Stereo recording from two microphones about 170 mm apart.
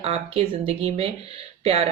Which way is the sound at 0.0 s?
35° right (ahead or behind).